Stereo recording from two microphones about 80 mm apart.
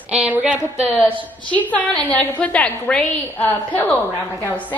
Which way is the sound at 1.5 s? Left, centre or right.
Centre.